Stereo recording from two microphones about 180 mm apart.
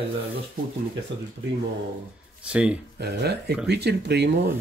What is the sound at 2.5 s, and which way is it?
Speech, 5° right (ahead or behind).